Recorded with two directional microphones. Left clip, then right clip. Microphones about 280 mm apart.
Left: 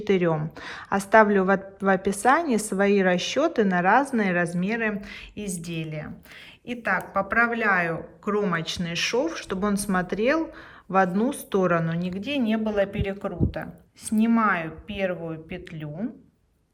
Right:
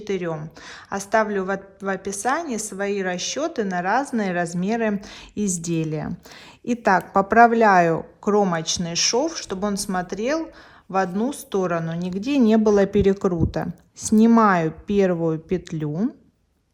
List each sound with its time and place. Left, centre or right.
0.0 s a woman's voice: centre